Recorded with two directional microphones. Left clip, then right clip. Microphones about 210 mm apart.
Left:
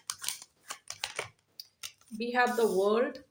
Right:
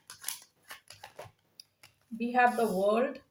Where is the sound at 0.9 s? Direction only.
30° left (ahead or behind).